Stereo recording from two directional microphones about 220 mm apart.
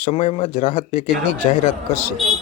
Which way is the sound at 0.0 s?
30° left (ahead or behind).